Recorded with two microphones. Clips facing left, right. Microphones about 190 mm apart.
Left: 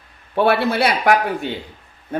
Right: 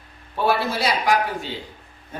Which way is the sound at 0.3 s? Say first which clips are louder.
Left 5 dB; 65° left (ahead or behind).